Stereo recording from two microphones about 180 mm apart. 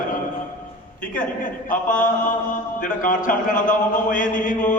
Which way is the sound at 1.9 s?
45° left (ahead or behind).